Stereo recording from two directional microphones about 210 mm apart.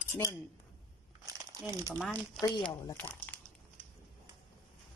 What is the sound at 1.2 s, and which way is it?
Crumpling, 15° right (ahead or behind).